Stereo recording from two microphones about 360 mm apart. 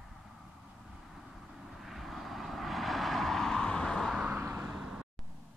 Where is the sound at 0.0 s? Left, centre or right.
Centre.